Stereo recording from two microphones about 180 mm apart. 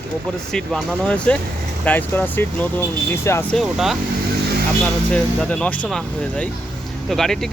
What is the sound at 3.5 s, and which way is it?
Speech, centre (ahead or behind).